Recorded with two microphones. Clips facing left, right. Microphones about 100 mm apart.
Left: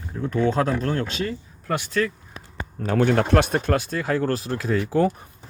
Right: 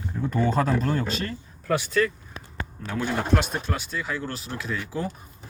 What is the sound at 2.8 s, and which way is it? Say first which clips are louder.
Speech: left 8 dB; 55° left (ahead or behind).